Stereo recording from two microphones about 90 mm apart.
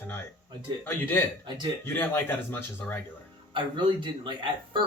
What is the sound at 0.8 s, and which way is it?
Speech, 25° left (ahead or behind).